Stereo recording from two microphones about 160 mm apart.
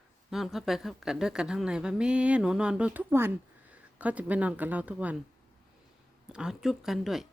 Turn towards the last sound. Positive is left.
turn(degrees=0)  # may be behind; listen again after turning